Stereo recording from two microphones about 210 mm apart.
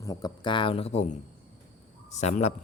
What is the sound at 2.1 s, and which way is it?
Speech, 35° left (ahead or behind).